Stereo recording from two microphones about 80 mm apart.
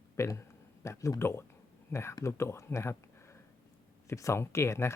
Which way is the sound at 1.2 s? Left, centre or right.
Left.